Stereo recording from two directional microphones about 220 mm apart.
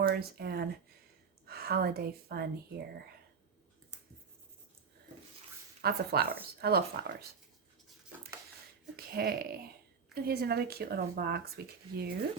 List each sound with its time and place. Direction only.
0.0 s speech: 45° right (ahead or behind)
5.8 s speech: 45° right (ahead or behind)
9.0 s speech: 45° right (ahead or behind)